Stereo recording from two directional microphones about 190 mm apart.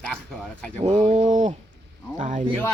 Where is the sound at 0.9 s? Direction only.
40° right (ahead or behind).